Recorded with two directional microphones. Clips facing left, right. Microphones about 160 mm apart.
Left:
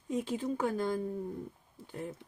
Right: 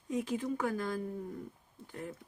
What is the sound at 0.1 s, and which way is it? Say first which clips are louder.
Speech: left 1 dB; 25° left (ahead or behind).